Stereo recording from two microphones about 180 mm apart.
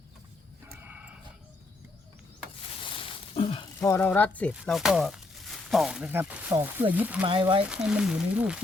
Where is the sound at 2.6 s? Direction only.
30° left (ahead or behind).